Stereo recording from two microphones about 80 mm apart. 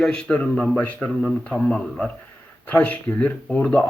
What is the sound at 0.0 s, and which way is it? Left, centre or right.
Speech, centre.